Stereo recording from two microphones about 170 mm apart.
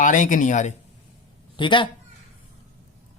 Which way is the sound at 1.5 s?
30° left (ahead or behind).